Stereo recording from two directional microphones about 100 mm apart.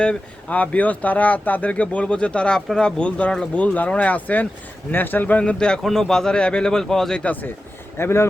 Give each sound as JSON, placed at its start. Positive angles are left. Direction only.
{"t": 0.0, "sound": "speech", "side_deg": 10}